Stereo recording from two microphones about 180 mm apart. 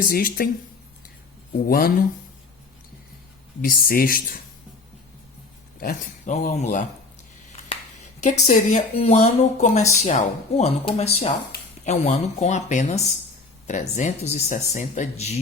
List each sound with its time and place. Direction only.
0.0 s speech: 50° left (ahead or behind)
1.6 s speech: 55° left (ahead or behind)
3.6 s speech: 55° left (ahead or behind)
5.8 s speech: 45° left (ahead or behind)
8.2 s speech: 40° left (ahead or behind)